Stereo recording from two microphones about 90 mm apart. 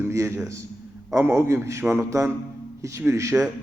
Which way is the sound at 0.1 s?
30° right (ahead or behind).